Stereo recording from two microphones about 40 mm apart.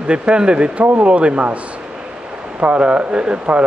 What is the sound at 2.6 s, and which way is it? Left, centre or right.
Speech, right.